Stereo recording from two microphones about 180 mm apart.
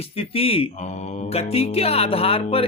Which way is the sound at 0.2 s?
30° left (ahead or behind).